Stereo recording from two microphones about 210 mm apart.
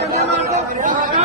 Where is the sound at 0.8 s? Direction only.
40° right (ahead or behind).